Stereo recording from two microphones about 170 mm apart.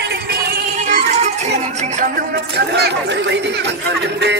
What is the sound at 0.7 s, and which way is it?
Music, 45° right (ahead or behind).